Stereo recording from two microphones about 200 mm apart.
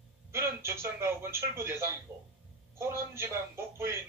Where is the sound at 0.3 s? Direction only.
15° right (ahead or behind).